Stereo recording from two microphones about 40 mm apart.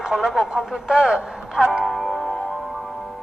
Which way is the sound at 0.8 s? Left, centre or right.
Centre.